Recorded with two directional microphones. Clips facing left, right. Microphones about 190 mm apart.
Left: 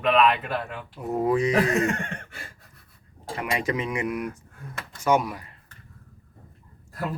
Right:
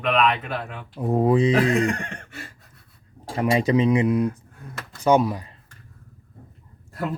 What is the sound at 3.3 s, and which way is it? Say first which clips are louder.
Cutlery: right 7 dB; 30° right (ahead or behind).